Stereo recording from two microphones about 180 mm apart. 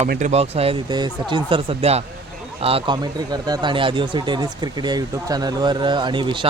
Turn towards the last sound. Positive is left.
turn(degrees=-25)  # may be behind; listen again after turning